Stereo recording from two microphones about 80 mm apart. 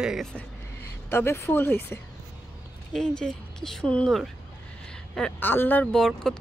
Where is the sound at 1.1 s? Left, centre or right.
Left.